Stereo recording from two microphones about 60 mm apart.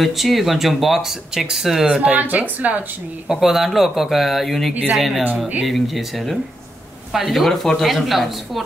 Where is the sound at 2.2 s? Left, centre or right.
Right.